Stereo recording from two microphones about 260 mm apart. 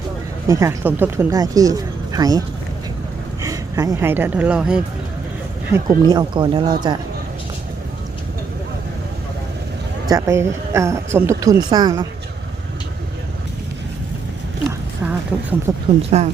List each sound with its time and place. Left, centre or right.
0.4 s speech: centre
3.4 s speech: centre
5.7 s speech: centre
10.1 s speech: centre
14.7 s a sound: centre
16.0 s speech: right